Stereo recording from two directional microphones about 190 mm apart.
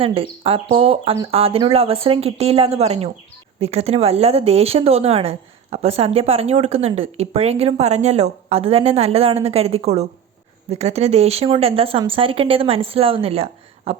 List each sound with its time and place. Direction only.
0.0 s a woman's voice: 30° right (ahead or behind)